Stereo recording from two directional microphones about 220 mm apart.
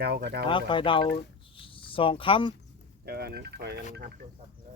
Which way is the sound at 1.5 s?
25° left (ahead or behind).